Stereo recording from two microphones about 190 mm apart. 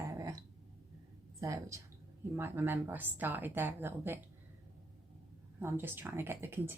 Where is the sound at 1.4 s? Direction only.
15° right (ahead or behind).